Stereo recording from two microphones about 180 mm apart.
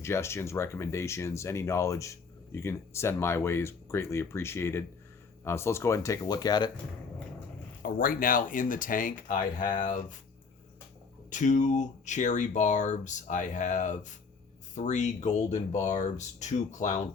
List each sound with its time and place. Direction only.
0.0 s speech: 15° left (ahead or behind)
7.8 s speech: 50° left (ahead or behind)
11.3 s speech: 45° left (ahead or behind)